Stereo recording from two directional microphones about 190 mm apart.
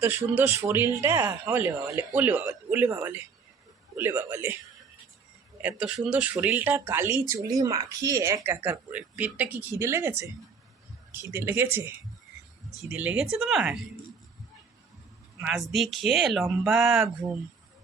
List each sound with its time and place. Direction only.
0.0 s speech: 10° right (ahead or behind)
5.6 s speech: 5° right (ahead or behind)
15.4 s speech: 5° right (ahead or behind)